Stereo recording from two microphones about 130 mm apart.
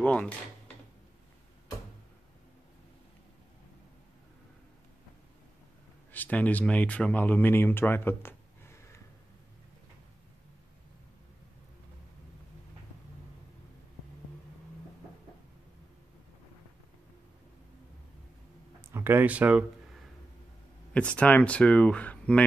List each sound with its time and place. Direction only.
0.0 s speech: 10° left (ahead or behind)
6.1 s speech: 10° left (ahead or behind)
18.8 s speech: 20° right (ahead or behind)
20.9 s speech: 10° left (ahead or behind)